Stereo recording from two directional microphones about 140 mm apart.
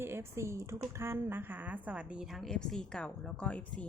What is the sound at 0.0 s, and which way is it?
A woman's voice, 15° right (ahead or behind).